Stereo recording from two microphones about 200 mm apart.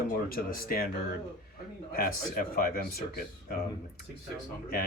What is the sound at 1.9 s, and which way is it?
Speech, 45° left (ahead or behind).